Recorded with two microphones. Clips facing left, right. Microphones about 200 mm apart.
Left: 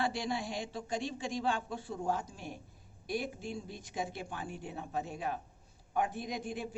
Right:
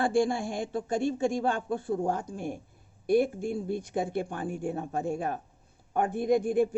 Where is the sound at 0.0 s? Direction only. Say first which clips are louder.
Right 9 dB; 50° right (ahead or behind).